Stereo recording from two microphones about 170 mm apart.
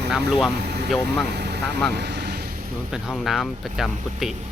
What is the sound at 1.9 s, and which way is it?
Vehicle, 75° right (ahead or behind).